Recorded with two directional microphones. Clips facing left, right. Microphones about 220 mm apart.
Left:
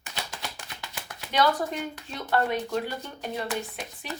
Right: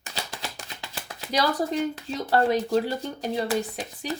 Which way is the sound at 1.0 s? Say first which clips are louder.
Left 1 dB; 35° right (ahead or behind).